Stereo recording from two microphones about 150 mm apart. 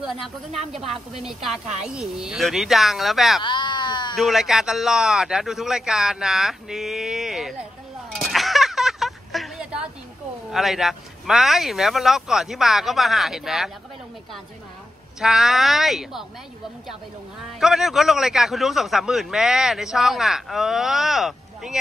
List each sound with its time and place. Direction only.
0.7 s a man's voice: centre (ahead or behind)
3.4 s a sound: 30° left (ahead or behind)
4.2 s a man's voice: centre (ahead or behind)
8.1 s a sound: centre (ahead or behind)
10.5 s a man's voice: centre (ahead or behind)
15.1 s a man's voice: centre (ahead or behind)
17.6 s a man's voice: 5° right (ahead or behind)